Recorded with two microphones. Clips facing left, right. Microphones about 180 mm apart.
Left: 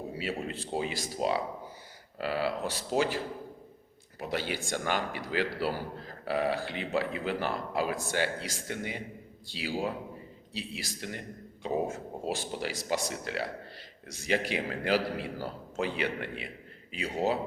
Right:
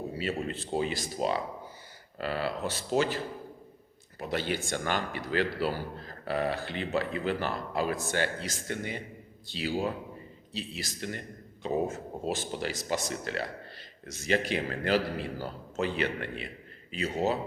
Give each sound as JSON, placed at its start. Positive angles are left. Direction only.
{"t": 0.2, "sound": "speech", "side_deg": 10}
{"t": 4.2, "sound": "speech", "side_deg": 10}